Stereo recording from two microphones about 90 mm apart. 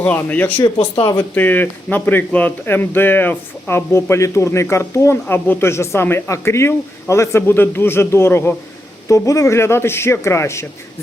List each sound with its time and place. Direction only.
0.0 s speech: 20° left (ahead or behind)
9.0 s a man's voice: 35° left (ahead or behind)